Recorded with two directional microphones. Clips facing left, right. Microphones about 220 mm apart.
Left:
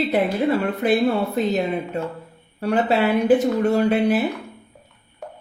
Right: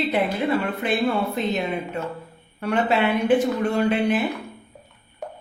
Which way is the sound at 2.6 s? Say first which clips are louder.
Left 2 dB; 35° left (ahead or behind).